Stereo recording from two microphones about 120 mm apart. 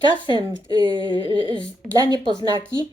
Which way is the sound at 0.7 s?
40° right (ahead or behind).